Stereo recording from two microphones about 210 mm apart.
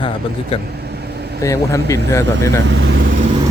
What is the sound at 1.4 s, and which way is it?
Speech, 15° left (ahead or behind).